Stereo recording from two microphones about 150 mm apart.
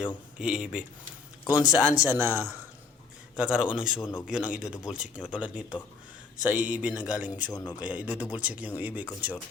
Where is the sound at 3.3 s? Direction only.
5° right (ahead or behind).